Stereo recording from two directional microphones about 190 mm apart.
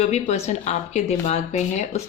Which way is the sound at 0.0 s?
35° left (ahead or behind).